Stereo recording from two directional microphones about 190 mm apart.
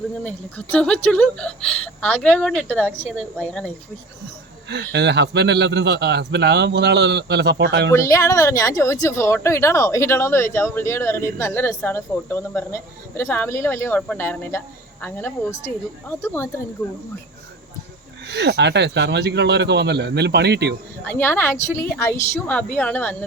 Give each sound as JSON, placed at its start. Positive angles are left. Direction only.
{"t": 0.3, "sound": "a woman's voice", "side_deg": 5}
{"t": 4.7, "sound": "a man's voice", "side_deg": -65}
{"t": 7.9, "sound": "a woman's voice", "side_deg": 15}
{"t": 18.3, "sound": "a man's voice", "side_deg": -65}
{"t": 21.1, "sound": "a woman's voice", "side_deg": 10}